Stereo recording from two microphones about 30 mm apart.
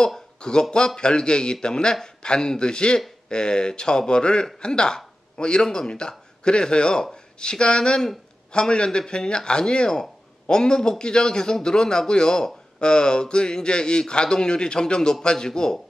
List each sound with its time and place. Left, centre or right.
0.4 s speech: left